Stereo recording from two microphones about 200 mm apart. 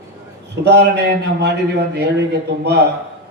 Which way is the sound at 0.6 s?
60° right (ahead or behind).